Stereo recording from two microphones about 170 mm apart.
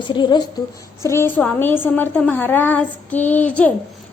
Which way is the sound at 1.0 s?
15° left (ahead or behind).